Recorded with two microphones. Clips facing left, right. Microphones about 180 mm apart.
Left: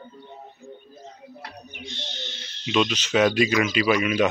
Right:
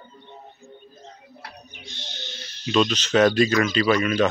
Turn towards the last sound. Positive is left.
turn(degrees=10)  # may be behind; listen again after turning